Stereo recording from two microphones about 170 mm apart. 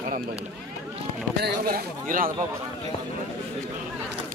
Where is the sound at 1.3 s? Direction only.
65° right (ahead or behind).